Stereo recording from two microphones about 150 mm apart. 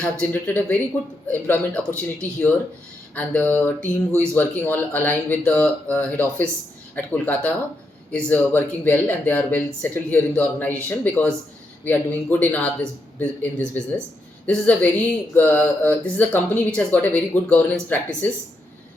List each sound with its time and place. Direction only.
0.0 s speech: 10° left (ahead or behind)
3.8 s speech: 15° right (ahead or behind)
4.4 s speech: 10° left (ahead or behind)